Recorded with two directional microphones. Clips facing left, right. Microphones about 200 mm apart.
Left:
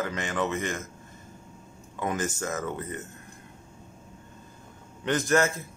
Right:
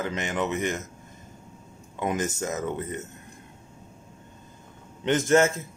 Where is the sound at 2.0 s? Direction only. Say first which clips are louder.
Right 2 dB; 20° right (ahead or behind).